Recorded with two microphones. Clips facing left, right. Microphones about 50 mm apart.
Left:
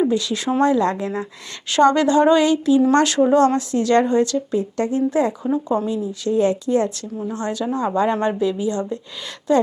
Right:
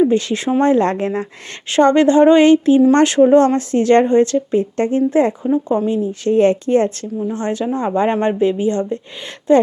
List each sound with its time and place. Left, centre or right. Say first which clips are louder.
0.1 s a woman's voice: right 4 dB; right
6.0 s a woman's voice: right 5 dB; right